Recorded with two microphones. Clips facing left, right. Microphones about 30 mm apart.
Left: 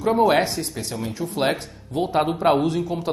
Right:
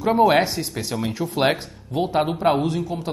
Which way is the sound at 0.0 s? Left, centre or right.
Centre.